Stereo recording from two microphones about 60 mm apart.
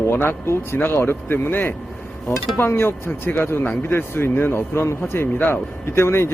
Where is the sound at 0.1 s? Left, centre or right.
Left.